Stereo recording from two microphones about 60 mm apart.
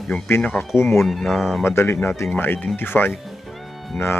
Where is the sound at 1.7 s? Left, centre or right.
Left.